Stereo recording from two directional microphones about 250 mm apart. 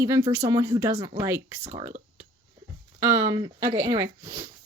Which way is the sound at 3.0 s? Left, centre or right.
Centre.